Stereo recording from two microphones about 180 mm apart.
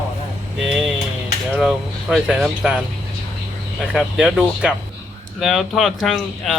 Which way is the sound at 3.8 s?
5° right (ahead or behind).